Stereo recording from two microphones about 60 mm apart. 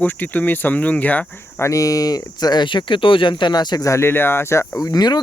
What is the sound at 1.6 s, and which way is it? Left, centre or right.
Speech, left.